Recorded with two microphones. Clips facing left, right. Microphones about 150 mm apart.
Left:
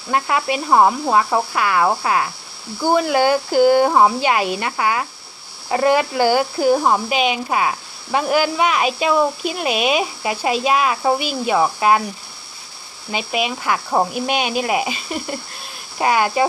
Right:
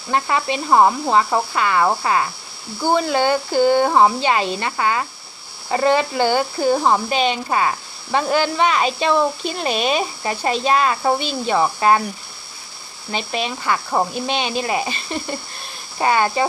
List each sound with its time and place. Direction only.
0.1 s speech: 5° left (ahead or behind)
13.1 s speech: 10° left (ahead or behind)